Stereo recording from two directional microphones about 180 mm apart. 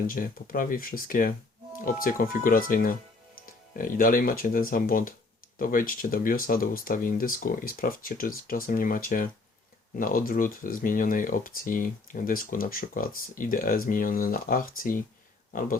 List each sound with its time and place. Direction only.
0.1 s speech: 50° left (ahead or behind)